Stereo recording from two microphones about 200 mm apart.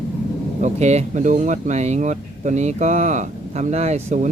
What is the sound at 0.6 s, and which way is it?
Speech, 35° right (ahead or behind).